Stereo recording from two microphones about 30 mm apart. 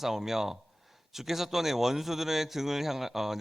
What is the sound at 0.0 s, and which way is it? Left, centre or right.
A man's voice, centre.